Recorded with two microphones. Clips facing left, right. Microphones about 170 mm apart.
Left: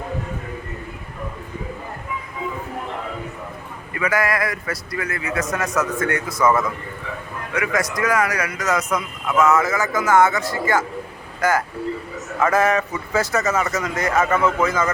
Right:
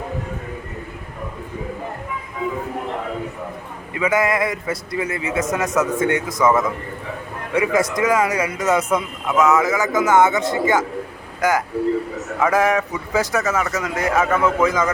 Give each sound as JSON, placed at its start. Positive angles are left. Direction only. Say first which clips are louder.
{"t": 3.9, "sound": "a man's voice", "louder": "right 3 dB", "side_deg": -20}
{"t": 7.5, "sound": "a man's voice", "louder": "right 5 dB", "side_deg": -30}
{"t": 9.2, "sound": "a man's voice", "louder": "even", "side_deg": -15}